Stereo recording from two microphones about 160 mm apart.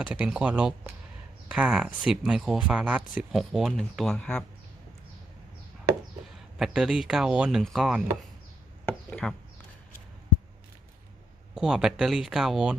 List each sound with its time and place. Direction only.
0.1 s speech: 5° right (ahead or behind)
6.3 s speech: 5° right (ahead or behind)
9.0 s a sound: 5° left (ahead or behind)
11.5 s speech: 5° right (ahead or behind)